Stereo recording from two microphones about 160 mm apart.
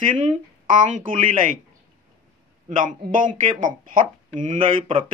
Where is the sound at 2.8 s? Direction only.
55° right (ahead or behind).